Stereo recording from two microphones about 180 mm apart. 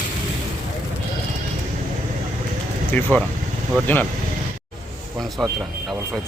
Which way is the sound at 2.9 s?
10° left (ahead or behind).